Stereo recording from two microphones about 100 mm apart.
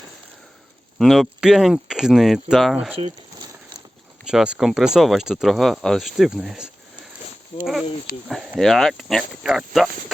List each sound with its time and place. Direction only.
0.9 s speech: centre (ahead or behind)
3.0 s speech: 70° right (ahead or behind)
4.3 s speech: 10° right (ahead or behind)
8.5 s speech: centre (ahead or behind)